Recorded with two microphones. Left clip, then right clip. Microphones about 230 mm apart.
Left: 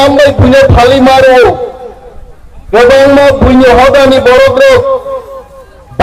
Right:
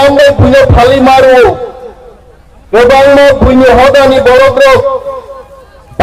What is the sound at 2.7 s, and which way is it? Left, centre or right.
A man's voice, left.